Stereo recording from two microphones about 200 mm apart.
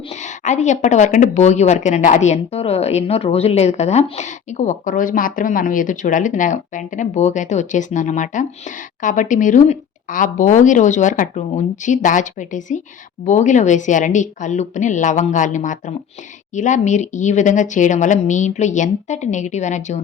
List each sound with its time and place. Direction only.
0.4 s speech: 35° left (ahead or behind)